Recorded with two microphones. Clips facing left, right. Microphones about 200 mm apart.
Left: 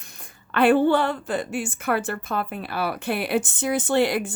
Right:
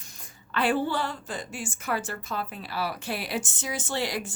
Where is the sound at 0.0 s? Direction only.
60° left (ahead or behind).